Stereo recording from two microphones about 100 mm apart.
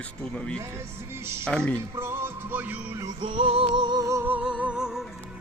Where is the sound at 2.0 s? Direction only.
25° right (ahead or behind).